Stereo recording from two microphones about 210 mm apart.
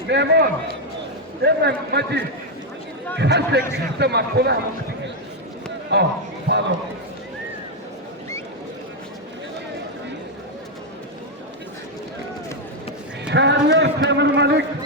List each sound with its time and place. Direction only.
0.1 s a man's voice: 55° right (ahead or behind)
5.9 s a man's voice: 55° right (ahead or behind)
13.2 s a man's voice: 55° right (ahead or behind)